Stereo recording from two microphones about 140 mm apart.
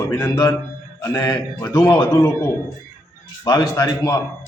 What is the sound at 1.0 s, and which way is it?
A man's voice, 25° left (ahead or behind).